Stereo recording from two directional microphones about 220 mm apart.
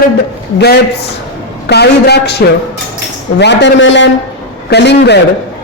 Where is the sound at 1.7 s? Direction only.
50° left (ahead or behind).